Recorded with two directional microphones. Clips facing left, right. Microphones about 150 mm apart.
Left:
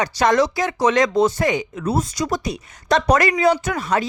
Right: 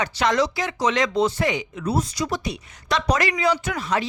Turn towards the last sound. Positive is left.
turn(degrees=45)  # may be behind; listen again after turning